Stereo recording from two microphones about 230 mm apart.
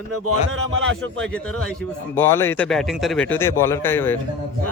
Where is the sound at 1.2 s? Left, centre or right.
Centre.